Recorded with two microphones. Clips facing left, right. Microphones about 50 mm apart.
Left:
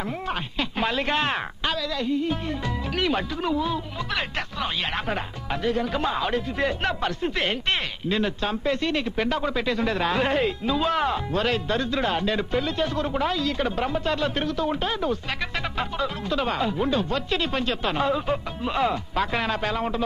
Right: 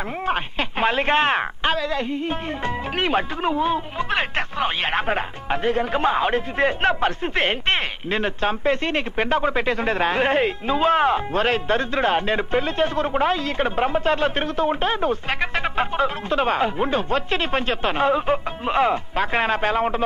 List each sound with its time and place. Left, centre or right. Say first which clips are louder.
0.3 s speech: right 5 dB; right